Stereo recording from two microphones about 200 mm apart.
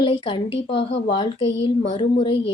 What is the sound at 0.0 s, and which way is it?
A woman's voice, 25° left (ahead or behind).